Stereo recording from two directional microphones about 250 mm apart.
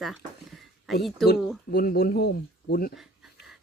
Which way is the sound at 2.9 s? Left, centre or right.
Centre.